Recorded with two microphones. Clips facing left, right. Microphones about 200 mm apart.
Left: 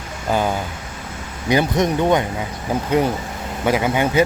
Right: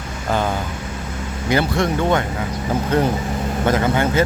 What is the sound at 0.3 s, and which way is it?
Speech, 10° left (ahead or behind).